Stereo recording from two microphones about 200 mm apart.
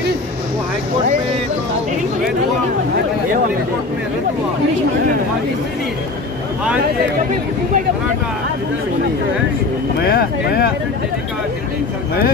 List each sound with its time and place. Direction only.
10.0 s speech: 50° left (ahead or behind)